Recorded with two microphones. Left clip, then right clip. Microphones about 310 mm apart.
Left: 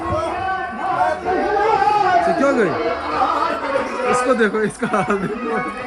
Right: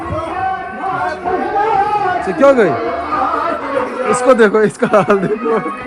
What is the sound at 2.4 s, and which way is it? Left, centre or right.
Speech, centre.